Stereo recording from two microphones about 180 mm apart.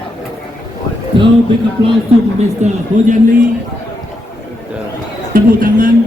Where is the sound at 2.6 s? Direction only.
40° right (ahead or behind).